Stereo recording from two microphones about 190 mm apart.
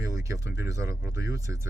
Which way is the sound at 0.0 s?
15° right (ahead or behind).